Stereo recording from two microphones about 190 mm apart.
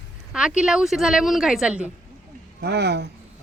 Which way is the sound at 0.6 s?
5° right (ahead or behind).